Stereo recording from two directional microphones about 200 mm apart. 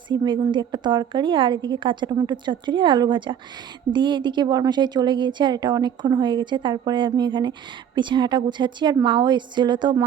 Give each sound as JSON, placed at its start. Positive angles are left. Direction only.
{"t": 0.1, "sound": "a woman's voice", "side_deg": -20}